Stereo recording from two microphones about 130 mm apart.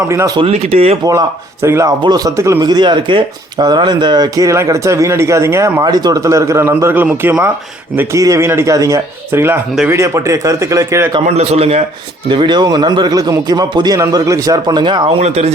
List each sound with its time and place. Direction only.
0.1 s speech: 20° right (ahead or behind)
0.5 s speech: 55° right (ahead or behind)
1.6 s speech: 20° right (ahead or behind)
11.3 s a man's voice: 55° right (ahead or behind)
12.3 s speech: 35° right (ahead or behind)
15.2 s a man's voice: 55° right (ahead or behind)